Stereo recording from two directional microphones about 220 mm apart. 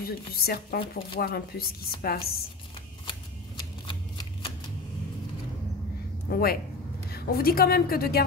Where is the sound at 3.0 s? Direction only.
20° left (ahead or behind).